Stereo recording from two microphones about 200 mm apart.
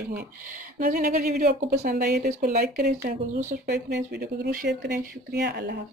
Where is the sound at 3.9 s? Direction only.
55° right (ahead or behind).